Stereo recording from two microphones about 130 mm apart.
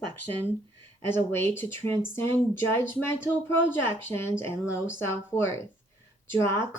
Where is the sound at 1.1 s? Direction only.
20° left (ahead or behind).